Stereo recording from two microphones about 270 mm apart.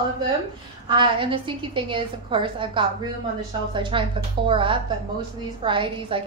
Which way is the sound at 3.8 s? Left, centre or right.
Centre.